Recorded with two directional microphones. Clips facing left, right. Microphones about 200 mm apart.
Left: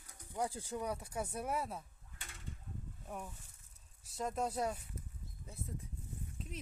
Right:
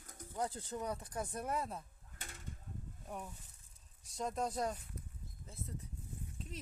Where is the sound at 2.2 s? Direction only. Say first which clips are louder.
Right 1 dB; 45° right (ahead or behind).